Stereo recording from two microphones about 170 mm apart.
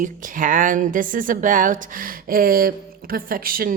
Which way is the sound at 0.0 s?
55° right (ahead or behind).